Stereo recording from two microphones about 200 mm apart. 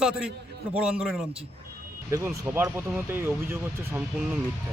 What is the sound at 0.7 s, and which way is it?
A man's voice, 5° right (ahead or behind).